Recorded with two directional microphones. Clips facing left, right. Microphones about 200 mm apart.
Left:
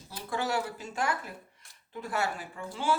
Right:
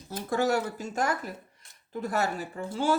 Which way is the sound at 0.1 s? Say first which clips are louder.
Right 6 dB; 45° right (ahead or behind).